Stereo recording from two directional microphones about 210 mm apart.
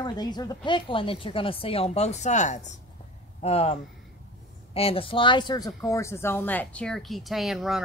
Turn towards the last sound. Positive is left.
turn(degrees=0)  # may be behind; listen again after turning